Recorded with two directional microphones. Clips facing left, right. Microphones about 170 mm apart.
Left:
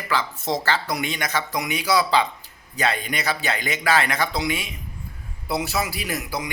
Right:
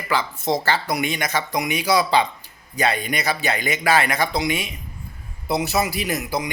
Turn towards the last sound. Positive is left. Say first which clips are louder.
# right 4 dB
turn(degrees=-20)  # may be behind; listen again after turning